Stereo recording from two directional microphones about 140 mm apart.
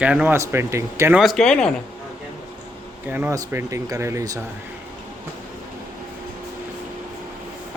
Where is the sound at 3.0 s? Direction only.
15° right (ahead or behind).